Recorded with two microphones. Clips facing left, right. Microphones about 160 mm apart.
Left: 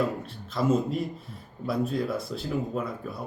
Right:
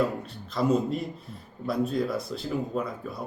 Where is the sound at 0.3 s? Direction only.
Centre (ahead or behind).